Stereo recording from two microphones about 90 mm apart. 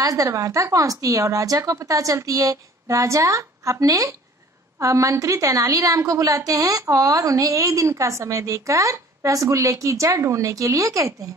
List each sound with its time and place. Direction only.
0.0 s a woman's voice: 40° right (ahead or behind)